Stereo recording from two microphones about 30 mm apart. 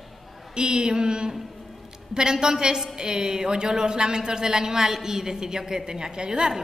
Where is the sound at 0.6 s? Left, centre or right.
Right.